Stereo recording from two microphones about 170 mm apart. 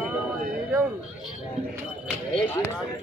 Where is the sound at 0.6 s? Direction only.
Centre (ahead or behind).